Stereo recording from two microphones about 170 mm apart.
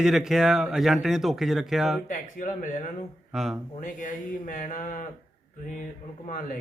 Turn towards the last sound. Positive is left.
turn(degrees=50)  # may be behind; listen again after turning